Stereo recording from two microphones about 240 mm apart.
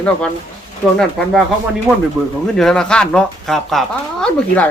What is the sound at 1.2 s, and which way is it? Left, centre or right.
Speech, centre.